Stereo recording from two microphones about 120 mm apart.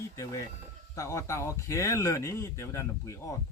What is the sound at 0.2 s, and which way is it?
Speech, 25° left (ahead or behind).